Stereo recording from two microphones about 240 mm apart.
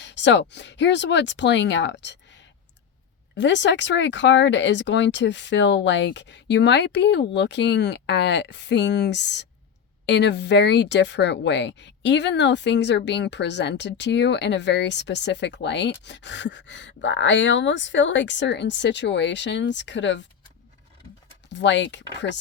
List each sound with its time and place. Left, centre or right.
0.0 s speech: left
21.5 s speech: left